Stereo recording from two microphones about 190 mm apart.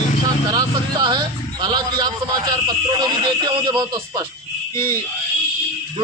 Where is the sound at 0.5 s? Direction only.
20° right (ahead or behind).